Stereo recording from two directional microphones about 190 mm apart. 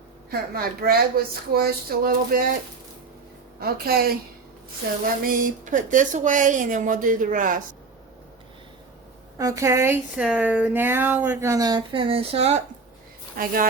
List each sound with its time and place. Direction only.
0.3 s speech: 55° right (ahead or behind)
3.6 s speech: 55° right (ahead or behind)
9.4 s speech: 15° right (ahead or behind); by 12.6 s 35° right (ahead or behind)
13.3 s speech: 50° right (ahead or behind)